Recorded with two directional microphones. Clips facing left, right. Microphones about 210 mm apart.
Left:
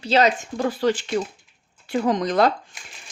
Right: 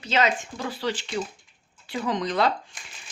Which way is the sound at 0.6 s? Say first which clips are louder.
Left 9 dB; 45° left (ahead or behind).